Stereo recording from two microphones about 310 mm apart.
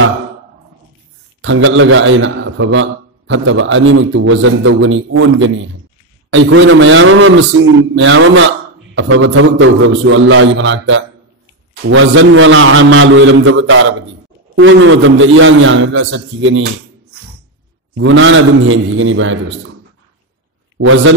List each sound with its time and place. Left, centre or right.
1.4 s a man's voice: right
17.9 s a man's voice: right
20.7 s a man's voice: right